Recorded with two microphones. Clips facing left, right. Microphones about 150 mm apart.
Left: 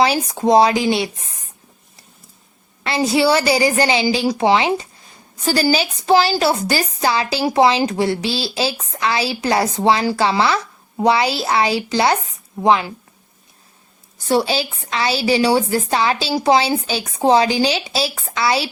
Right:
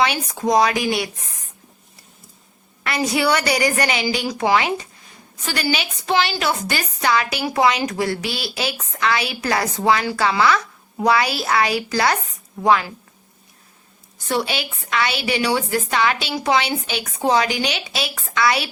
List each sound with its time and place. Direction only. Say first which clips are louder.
0.0 s a woman's voice: left 4 dB; 30° left (ahead or behind)
2.8 s a woman's voice: left 4 dB; 25° left (ahead or behind)
5.4 s a woman's voice: left 6 dB; 35° left (ahead or behind)
14.3 s a woman's voice: left 5 dB; 30° left (ahead or behind)